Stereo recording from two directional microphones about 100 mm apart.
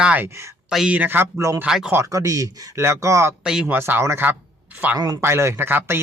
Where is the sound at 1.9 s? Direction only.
30° right (ahead or behind).